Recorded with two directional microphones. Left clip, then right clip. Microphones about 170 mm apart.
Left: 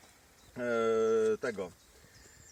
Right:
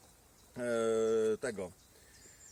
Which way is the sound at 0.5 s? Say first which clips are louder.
Left 2 dB; 15° right (ahead or behind).